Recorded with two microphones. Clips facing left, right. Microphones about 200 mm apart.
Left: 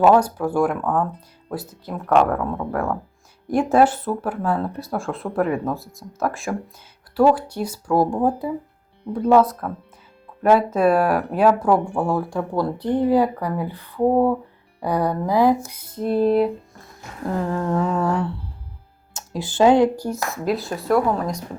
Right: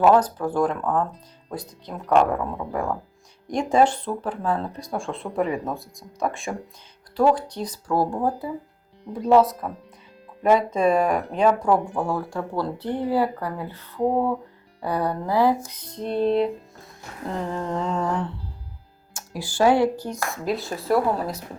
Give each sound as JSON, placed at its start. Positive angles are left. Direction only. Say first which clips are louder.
{"t": 0.0, "sound": "speech", "louder": "left 2 dB", "side_deg": 10}
{"t": 3.4, "sound": "speech", "louder": "left 3 dB", "side_deg": 5}
{"t": 9.3, "sound": "speech", "louder": "left 1 dB", "side_deg": 0}
{"t": 17.7, "sound": "speech", "louder": "left 3 dB", "side_deg": 10}
{"t": 19.1, "sound": "speech", "louder": "left 4 dB", "side_deg": 20}
{"t": 20.1, "sound": "speech", "louder": "left 3 dB", "side_deg": 0}